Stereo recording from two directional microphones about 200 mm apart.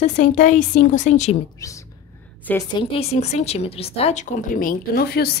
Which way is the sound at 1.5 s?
15° left (ahead or behind).